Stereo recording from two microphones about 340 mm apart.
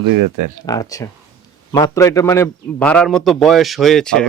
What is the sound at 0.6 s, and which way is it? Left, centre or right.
Speech, centre.